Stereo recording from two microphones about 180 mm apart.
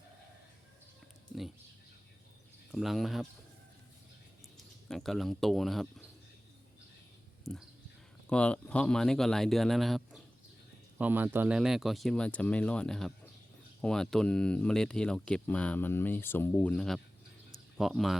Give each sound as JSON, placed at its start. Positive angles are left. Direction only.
{"t": 2.7, "sound": "speech", "side_deg": 0}
{"t": 4.5, "sound": "speech", "side_deg": 0}
{"t": 7.5, "sound": "speech", "side_deg": 0}